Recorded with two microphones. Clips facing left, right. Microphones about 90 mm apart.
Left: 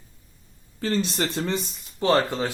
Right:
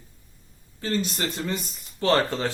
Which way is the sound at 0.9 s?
30° left (ahead or behind).